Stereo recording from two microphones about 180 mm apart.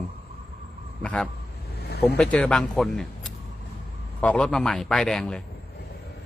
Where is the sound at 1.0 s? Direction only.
5° left (ahead or behind).